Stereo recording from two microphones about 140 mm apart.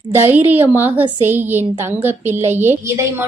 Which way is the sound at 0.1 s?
15° right (ahead or behind).